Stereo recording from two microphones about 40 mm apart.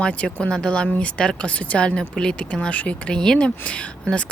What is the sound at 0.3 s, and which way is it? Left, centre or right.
A woman's voice, left.